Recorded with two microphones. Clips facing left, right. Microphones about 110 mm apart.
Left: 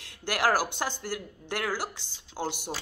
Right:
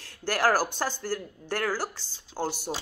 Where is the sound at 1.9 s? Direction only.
20° left (ahead or behind).